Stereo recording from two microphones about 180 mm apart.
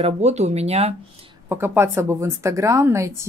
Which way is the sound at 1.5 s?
10° right (ahead or behind).